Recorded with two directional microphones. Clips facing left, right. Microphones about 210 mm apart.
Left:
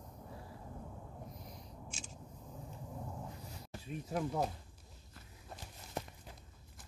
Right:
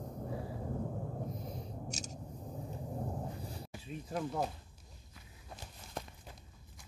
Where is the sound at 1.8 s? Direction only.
40° right (ahead or behind).